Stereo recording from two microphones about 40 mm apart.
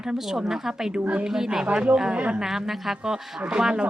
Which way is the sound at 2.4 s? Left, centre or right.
Centre.